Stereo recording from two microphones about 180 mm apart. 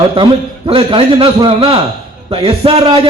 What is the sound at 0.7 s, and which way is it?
A man's voice, 30° right (ahead or behind).